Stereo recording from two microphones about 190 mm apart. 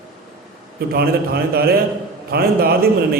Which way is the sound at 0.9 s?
55° right (ahead or behind).